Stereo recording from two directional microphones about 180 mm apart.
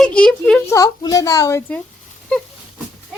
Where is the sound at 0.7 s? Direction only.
20° left (ahead or behind).